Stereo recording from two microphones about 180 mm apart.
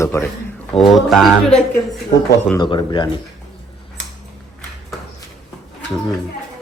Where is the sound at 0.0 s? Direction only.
15° left (ahead or behind).